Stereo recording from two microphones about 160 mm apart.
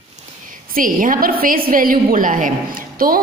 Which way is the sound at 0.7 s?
60° right (ahead or behind).